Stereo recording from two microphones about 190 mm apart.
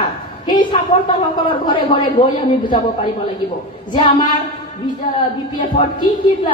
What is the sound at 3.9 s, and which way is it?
Speech, 25° left (ahead or behind).